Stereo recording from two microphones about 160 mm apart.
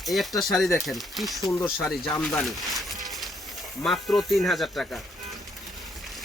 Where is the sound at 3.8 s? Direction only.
Centre (ahead or behind).